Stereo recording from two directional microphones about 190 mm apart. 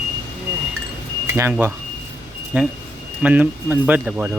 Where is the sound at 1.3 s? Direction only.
10° right (ahead or behind).